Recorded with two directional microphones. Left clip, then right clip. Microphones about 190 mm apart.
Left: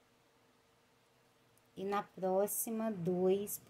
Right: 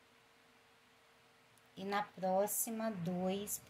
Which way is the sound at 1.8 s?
45° left (ahead or behind).